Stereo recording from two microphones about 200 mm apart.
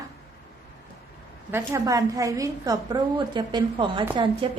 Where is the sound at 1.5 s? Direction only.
15° right (ahead or behind).